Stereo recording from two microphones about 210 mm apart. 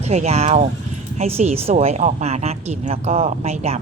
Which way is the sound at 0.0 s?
30° right (ahead or behind).